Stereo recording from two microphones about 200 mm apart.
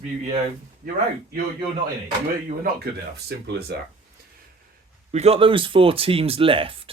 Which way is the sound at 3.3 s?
55° right (ahead or behind).